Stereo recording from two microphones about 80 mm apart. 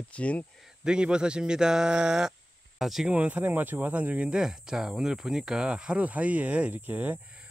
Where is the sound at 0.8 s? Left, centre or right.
Centre.